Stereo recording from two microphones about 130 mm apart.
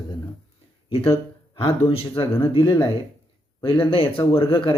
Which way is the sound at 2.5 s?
35° left (ahead or behind).